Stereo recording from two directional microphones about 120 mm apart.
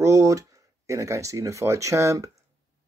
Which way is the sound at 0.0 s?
25° right (ahead or behind).